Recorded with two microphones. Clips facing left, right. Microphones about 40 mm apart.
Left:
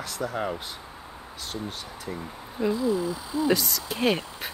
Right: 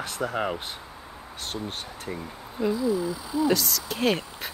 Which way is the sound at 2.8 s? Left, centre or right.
Left.